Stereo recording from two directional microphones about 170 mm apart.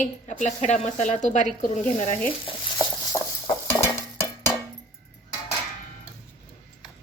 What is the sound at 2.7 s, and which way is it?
Clip-clop, 25° left (ahead or behind).